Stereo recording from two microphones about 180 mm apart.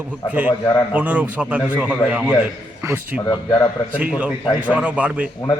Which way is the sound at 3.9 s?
5° right (ahead or behind).